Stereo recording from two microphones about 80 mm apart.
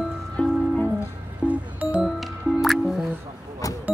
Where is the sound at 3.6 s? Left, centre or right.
Left.